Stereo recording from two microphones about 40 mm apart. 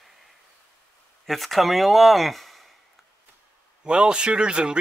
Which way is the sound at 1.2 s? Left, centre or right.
Centre.